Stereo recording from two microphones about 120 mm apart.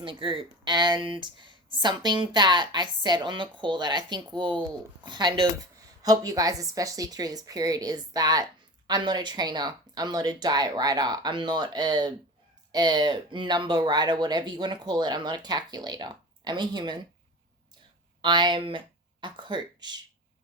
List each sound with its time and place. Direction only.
0.0 s speech: 45° right (ahead or behind)
6.0 s speech: 30° right (ahead or behind)
18.2 s speech: 40° right (ahead or behind)